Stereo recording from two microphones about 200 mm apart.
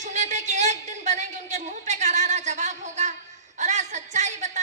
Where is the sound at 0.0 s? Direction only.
35° right (ahead or behind).